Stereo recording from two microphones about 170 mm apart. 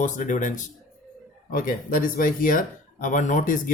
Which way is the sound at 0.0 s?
50° left (ahead or behind).